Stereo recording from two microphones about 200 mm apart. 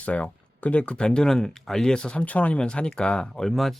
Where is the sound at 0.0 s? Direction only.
5° left (ahead or behind).